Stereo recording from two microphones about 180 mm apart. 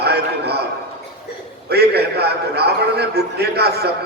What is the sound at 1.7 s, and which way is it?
A man's voice, 65° right (ahead or behind).